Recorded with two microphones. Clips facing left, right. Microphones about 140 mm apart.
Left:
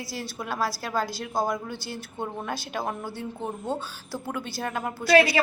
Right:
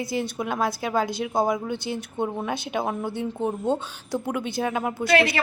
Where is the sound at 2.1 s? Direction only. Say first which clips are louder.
Right 4 dB; 15° right (ahead or behind).